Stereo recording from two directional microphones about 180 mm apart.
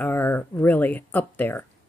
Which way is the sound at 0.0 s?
10° left (ahead or behind).